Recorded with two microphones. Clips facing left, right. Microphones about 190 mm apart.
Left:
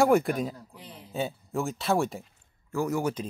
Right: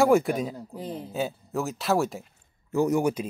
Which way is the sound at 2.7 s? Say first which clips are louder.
Right 5 dB; 20° right (ahead or behind).